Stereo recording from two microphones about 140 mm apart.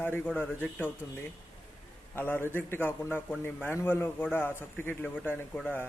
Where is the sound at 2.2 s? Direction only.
15° left (ahead or behind).